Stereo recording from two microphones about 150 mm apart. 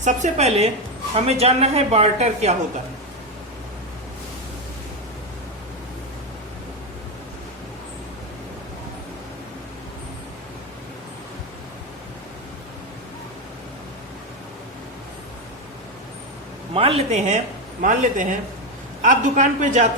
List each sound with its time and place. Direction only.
0.0 s speech: 50° right (ahead or behind)
16.7 s a man's voice: 40° right (ahead or behind)